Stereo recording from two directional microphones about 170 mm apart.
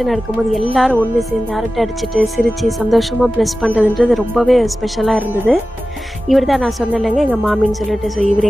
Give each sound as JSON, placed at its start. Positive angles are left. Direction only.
{"t": 0.0, "sound": "speech", "side_deg": 0}